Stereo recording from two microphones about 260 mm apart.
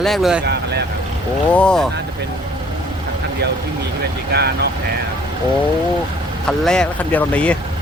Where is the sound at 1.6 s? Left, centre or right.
Centre.